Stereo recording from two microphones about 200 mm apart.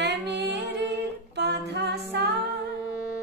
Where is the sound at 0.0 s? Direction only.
55° right (ahead or behind).